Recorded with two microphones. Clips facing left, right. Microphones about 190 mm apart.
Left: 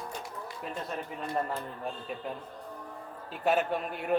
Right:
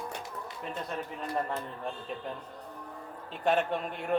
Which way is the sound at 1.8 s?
5° left (ahead or behind).